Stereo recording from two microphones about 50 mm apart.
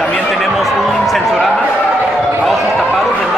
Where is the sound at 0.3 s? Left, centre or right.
Centre.